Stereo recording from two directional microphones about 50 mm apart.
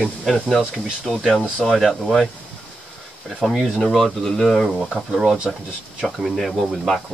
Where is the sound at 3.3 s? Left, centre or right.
Centre.